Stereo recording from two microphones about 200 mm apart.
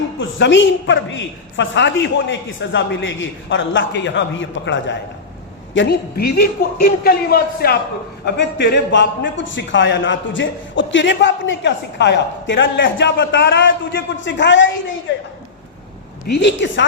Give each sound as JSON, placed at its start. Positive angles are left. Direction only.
{"t": 0.2, "sound": "a woman's voice", "side_deg": 65}
{"t": 5.7, "sound": "a man's voice", "side_deg": 55}
{"t": 16.2, "sound": "a man's voice", "side_deg": 55}